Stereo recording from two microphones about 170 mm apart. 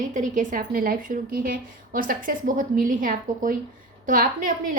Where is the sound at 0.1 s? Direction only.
50° right (ahead or behind).